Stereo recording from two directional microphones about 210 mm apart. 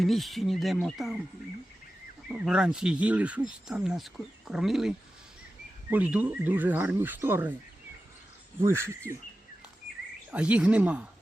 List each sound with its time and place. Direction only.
0.0 s speech: centre (ahead or behind)
2.3 s speech: 5° right (ahead or behind)
8.6 s speech: 10° right (ahead or behind)
10.3 s speech: 5° right (ahead or behind)